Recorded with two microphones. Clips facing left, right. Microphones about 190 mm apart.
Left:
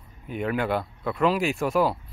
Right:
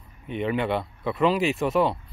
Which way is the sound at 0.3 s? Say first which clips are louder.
Right 1 dB; centre (ahead or behind).